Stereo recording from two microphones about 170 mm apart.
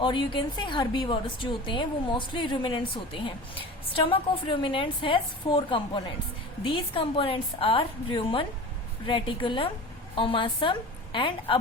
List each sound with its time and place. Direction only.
0.0 s a woman's voice: 30° left (ahead or behind)